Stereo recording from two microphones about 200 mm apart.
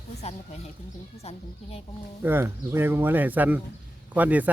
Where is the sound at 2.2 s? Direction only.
10° right (ahead or behind).